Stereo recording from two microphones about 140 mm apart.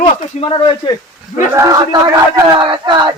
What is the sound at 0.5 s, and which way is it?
Speech, 35° left (ahead or behind).